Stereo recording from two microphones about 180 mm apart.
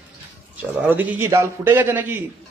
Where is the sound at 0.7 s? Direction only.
10° right (ahead or behind).